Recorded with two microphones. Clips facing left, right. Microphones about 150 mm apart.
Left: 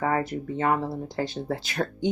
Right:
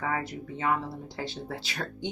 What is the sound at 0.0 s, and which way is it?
Speech, 45° left (ahead or behind).